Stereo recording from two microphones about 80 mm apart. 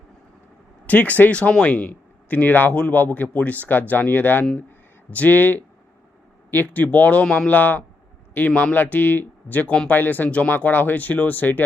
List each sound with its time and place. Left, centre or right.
0.9 s speech: left